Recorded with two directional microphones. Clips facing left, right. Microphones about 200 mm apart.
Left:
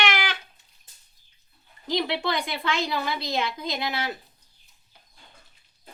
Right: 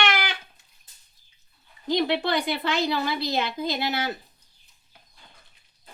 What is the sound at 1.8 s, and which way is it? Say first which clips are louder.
Speech: right 3 dB; centre (ahead or behind).